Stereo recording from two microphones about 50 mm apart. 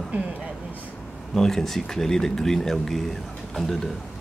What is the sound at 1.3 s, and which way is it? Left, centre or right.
Speech, centre.